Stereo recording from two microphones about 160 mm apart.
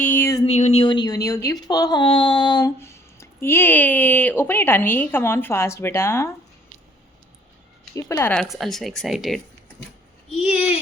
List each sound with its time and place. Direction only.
0.0 s a sound: 10° left (ahead or behind)
0.4 s speech: 40° left (ahead or behind); by 6.3 s 15° left (ahead or behind)
7.9 s speech: 15° left (ahead or behind)
8.4 s speech: centre (ahead or behind)